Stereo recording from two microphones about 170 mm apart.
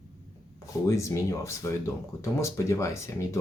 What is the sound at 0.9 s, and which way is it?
Speech, 15° left (ahead or behind).